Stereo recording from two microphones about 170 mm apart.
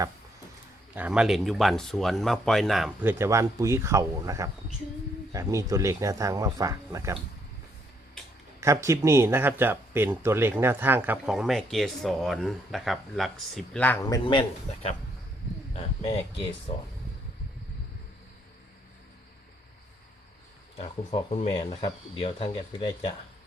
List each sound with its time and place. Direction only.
0.9 s speech: 5° right (ahead or behind)
3.0 s speech: 15° right (ahead or behind)
8.6 s speech: 15° right (ahead or behind); by 14.0 s 10° left (ahead or behind)
14.0 s speech: 25° left (ahead or behind)
20.8 s speech: 40° left (ahead or behind)